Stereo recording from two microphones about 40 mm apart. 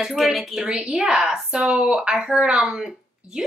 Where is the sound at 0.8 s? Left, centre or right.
Centre.